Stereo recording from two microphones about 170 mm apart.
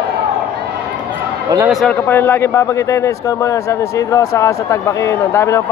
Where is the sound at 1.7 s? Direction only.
5° left (ahead or behind).